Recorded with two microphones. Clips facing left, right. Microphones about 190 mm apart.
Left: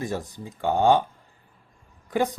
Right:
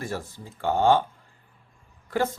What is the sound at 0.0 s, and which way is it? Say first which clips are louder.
A man's voice: left 3 dB; 15° left (ahead or behind).